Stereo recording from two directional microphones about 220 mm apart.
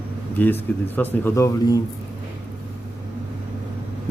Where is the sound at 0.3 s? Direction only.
10° left (ahead or behind).